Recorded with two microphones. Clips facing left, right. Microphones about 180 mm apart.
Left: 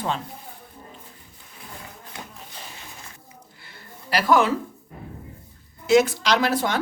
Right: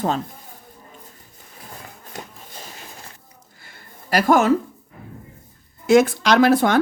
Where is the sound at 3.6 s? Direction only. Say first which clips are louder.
Right 2 dB; 45° right (ahead or behind).